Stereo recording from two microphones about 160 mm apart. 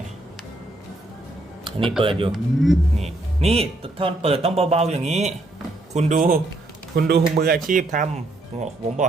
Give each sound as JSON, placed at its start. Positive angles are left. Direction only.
{"t": 2.0, "sound": "speech", "side_deg": -35}
{"t": 2.3, "sound": "speech", "side_deg": 0}
{"t": 3.0, "sound": "speech", "side_deg": -40}
{"t": 6.9, "sound": "speech", "side_deg": -75}